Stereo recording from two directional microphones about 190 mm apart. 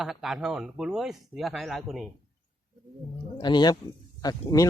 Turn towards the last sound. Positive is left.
turn(degrees=20)  # may be behind; listen again after turning